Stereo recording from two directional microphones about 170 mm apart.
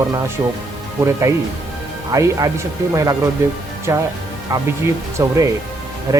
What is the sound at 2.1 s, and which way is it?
Speech, 20° right (ahead or behind).